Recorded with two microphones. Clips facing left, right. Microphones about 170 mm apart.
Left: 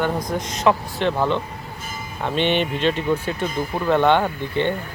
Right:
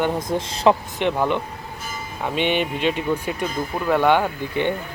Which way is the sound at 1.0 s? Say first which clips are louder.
Even; 15° right (ahead or behind).